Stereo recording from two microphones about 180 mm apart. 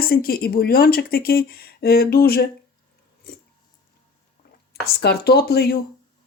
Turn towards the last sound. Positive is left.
turn(degrees=60)  # may be behind; listen again after turning